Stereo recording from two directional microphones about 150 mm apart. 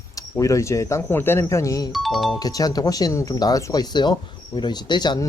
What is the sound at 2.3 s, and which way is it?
Speech, 25° left (ahead or behind).